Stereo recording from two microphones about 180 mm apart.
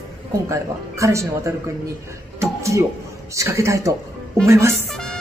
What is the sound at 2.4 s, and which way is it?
Music, 15° right (ahead or behind).